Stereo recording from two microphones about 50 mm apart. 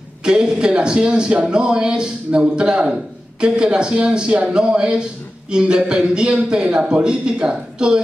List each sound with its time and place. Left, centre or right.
0.2 s a man's voice: centre